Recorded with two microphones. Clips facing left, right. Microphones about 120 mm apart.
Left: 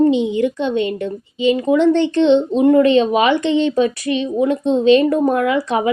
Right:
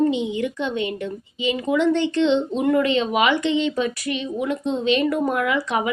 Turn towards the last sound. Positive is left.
turn(degrees=30)  # may be behind; listen again after turning